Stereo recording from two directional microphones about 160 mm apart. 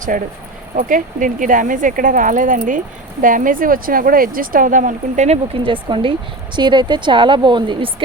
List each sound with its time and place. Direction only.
0.1 s speech: 55° right (ahead or behind); by 8.0 s 30° right (ahead or behind)